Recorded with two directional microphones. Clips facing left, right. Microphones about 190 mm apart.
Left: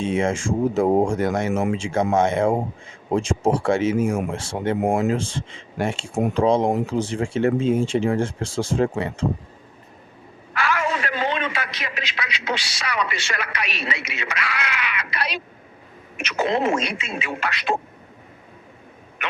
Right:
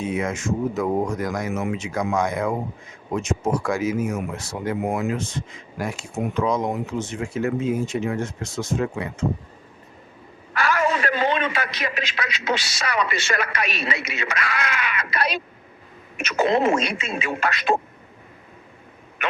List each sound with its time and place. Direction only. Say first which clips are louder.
0.0 s speech: left 3 dB; 25° left (ahead or behind)
10.5 s a man's voice: right 2 dB; 40° right (ahead or behind)